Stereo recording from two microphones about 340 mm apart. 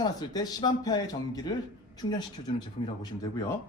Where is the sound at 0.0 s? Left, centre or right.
Centre.